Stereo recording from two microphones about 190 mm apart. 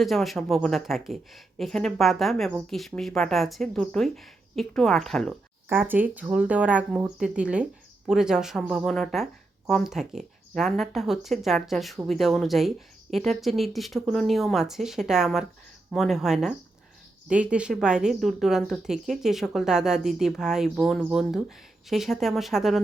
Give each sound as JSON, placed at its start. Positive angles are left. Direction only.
{"t": 0.0, "sound": "speech", "side_deg": 0}
{"t": 5.6, "sound": "speech", "side_deg": -10}